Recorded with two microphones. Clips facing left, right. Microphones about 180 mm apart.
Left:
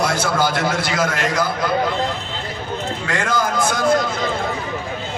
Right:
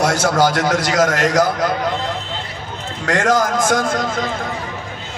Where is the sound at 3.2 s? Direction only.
45° right (ahead or behind).